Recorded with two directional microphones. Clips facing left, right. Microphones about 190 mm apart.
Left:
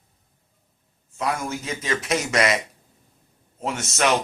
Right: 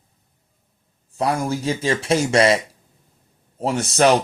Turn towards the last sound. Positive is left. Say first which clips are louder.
# right 6 dB
turn(degrees=-35)  # may be behind; listen again after turning